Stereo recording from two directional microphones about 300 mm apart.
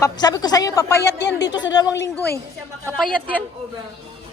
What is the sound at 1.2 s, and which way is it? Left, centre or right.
Speech, left.